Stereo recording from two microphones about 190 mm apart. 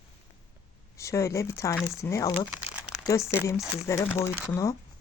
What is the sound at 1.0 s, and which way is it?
Speech, 15° left (ahead or behind).